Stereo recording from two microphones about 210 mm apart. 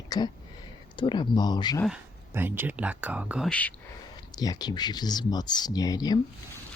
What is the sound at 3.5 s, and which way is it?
Speech, 5° left (ahead or behind).